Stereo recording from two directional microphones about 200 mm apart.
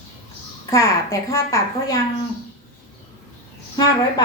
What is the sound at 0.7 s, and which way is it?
A woman's voice, 15° left (ahead or behind).